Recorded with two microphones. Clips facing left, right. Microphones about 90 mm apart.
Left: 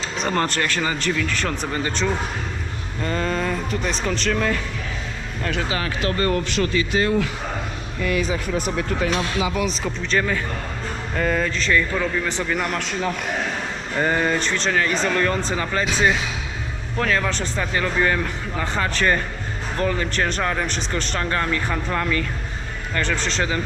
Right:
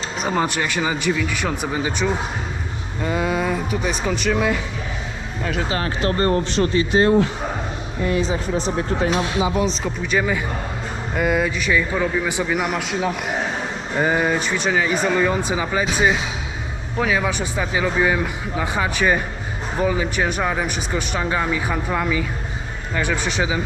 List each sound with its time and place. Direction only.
0.2 s speech: 10° right (ahead or behind)
5.8 s speech: 25° right (ahead or behind)
9.0 s speech: 10° right (ahead or behind)
9.4 s speech: 30° right (ahead or behind)
10.0 s speech: 10° right (ahead or behind)